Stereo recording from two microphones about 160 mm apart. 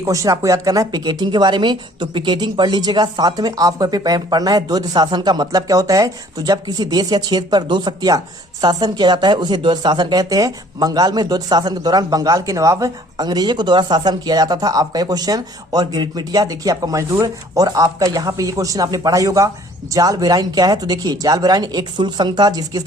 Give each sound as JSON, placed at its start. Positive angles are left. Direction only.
{"t": 0.0, "sound": "speech", "side_deg": -20}